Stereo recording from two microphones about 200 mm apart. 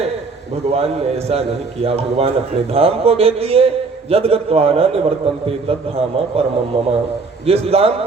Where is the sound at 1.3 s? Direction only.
30° right (ahead or behind).